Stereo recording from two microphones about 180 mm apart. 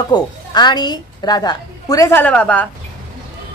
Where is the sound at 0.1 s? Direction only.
25° left (ahead or behind); by 2.7 s 10° left (ahead or behind).